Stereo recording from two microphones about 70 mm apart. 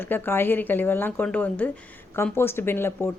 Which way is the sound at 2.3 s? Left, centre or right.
Left.